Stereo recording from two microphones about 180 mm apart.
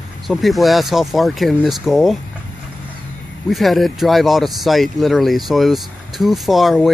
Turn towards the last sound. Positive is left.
turn(degrees=0)  # may be behind; listen again after turning